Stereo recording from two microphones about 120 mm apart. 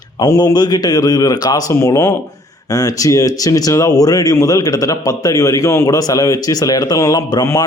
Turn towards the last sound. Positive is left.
turn(degrees=25)  # may be behind; listen again after turning